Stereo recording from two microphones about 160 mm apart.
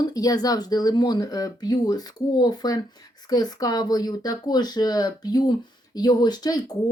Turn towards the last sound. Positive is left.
turn(degrees=25)  # may be behind; listen again after turning